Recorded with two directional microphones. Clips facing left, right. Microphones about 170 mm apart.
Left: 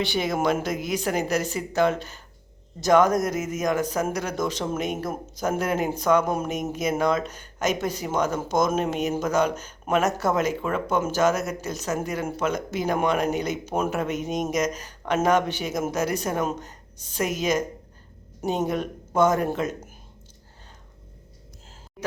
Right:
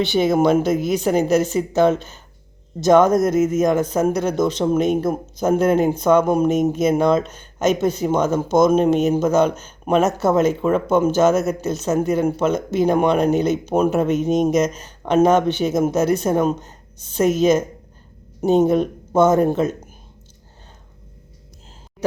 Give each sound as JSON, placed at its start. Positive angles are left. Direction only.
{"t": 0.0, "sound": "speech", "side_deg": -25}